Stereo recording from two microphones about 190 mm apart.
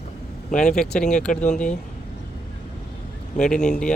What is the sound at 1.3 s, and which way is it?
Speech, 40° left (ahead or behind).